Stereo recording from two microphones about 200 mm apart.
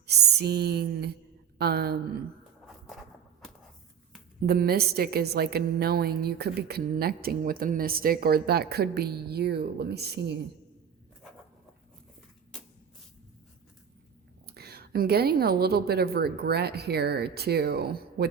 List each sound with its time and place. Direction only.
0.0 s a sound: 55° right (ahead or behind)
1.5 s a woman's voice: 55° right (ahead or behind)
4.4 s a woman's voice: 50° right (ahead or behind)
14.4 s a woman's voice: 50° right (ahead or behind)